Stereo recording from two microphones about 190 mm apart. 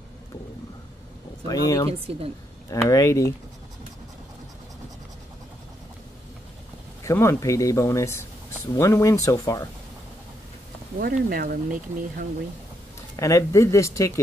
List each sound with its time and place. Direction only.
1.5 s speech: 20° left (ahead or behind)
2.0 s a woman's voice: 30° right (ahead or behind)
2.7 s speech: 15° left (ahead or behind)
7.0 s speech: 15° left (ahead or behind)
11.0 s speech: 50° right (ahead or behind)
13.1 s speech: 15° left (ahead or behind)